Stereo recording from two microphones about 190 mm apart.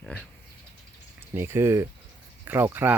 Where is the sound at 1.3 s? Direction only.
15° right (ahead or behind).